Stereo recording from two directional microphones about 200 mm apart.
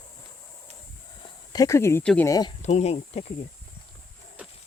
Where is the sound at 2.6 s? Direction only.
35° left (ahead or behind).